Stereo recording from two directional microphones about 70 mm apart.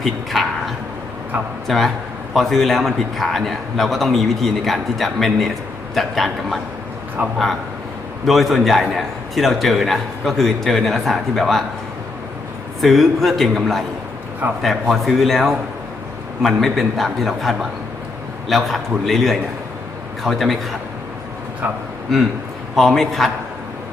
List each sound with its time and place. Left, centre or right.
0.0 s a man's voice: centre
7.2 s a man's voice: right
8.3 s a man's voice: centre
12.8 s a man's voice: centre
22.7 s a man's voice: centre